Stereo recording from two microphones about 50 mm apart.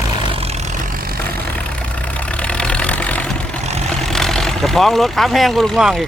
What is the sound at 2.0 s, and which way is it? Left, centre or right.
Vehicle, left.